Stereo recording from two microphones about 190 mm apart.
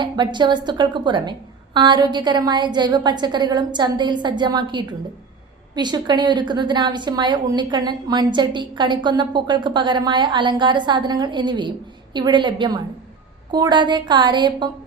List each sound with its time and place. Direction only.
0.0 s a woman's voice: 25° right (ahead or behind)